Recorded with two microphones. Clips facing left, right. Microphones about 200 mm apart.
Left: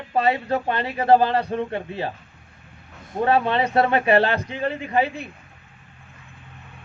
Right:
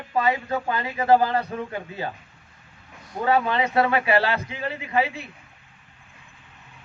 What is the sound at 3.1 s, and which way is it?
Speech, 30° left (ahead or behind).